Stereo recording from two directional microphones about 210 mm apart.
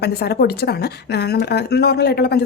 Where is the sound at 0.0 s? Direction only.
50° left (ahead or behind).